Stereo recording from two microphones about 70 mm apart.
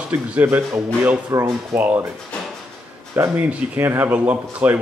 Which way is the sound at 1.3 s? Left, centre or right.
Right.